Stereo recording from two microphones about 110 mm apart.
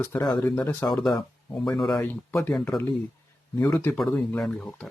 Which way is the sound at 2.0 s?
15° left (ahead or behind).